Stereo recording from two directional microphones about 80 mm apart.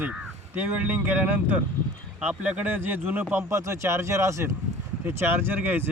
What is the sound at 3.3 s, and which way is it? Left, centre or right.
Speech, right.